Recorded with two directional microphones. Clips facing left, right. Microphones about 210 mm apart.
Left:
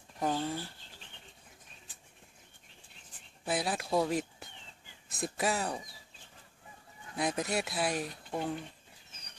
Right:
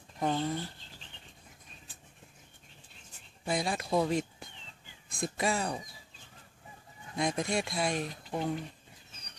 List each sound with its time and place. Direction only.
0.2 s speech: 5° left (ahead or behind)
3.4 s speech: 5° left (ahead or behind)
7.2 s speech: 5° left (ahead or behind)